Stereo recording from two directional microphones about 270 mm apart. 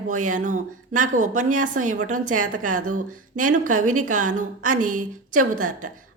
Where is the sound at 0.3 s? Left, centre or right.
Right.